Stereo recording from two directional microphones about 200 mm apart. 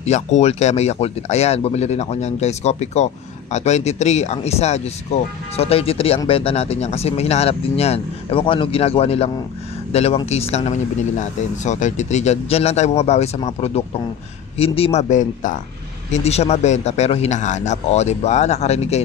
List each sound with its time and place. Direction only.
0.0 s speech: 35° left (ahead or behind)